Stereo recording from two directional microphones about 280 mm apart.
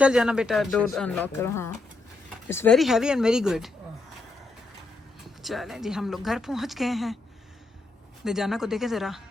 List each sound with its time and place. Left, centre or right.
0.0 s speech: centre
5.4 s speech: centre
8.2 s speech: centre